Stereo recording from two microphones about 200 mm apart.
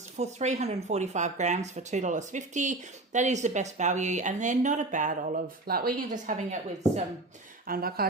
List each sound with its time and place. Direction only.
0.2 s speech: 35° right (ahead or behind)
7.7 s speech: 50° right (ahead or behind)